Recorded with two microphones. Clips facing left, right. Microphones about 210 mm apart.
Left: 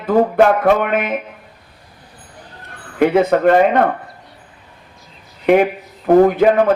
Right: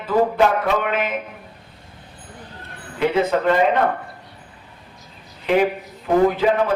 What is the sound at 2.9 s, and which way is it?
Speech, 55° left (ahead or behind).